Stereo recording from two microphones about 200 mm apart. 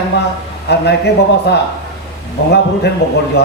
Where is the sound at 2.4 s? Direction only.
60° left (ahead or behind).